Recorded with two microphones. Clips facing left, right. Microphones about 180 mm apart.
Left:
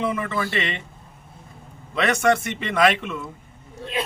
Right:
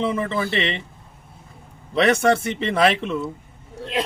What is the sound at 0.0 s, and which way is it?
Speech, 30° right (ahead or behind).